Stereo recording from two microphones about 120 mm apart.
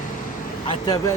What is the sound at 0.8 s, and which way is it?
Speech, 30° left (ahead or behind).